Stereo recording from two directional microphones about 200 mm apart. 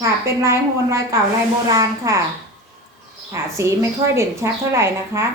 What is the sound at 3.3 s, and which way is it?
A woman's voice, 15° right (ahead or behind).